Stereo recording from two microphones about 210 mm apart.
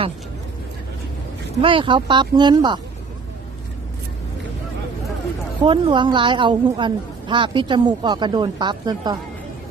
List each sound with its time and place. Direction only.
1.6 s a woman's voice: 25° right (ahead or behind)
5.6 s a woman's voice: 25° right (ahead or behind)